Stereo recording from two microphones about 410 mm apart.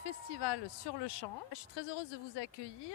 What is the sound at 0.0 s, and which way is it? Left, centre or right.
Speech, left.